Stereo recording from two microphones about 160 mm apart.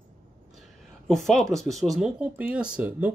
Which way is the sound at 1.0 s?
Centre (ahead or behind).